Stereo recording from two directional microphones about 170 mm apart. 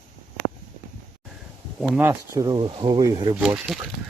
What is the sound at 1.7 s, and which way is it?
Speech, 5° right (ahead or behind).